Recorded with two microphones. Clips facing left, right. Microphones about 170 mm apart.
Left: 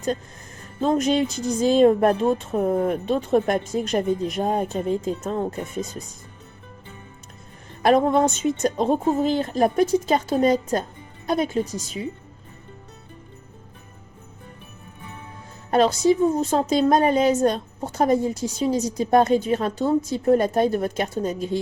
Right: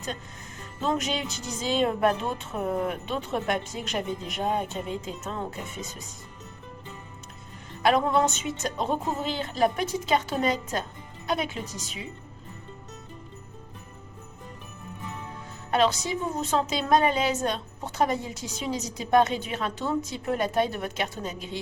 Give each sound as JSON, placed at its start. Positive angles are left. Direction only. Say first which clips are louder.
{"t": 0.8, "sound": "a woman's voice", "louder": "left 8 dB", "side_deg": 45}
{"t": 7.8, "sound": "a woman's voice", "louder": "left 5 dB", "side_deg": 40}
{"t": 15.7, "sound": "a woman's voice", "louder": "left 7 dB", "side_deg": 40}